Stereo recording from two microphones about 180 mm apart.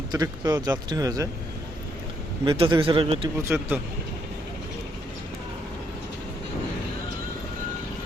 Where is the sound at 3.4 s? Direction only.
10° right (ahead or behind).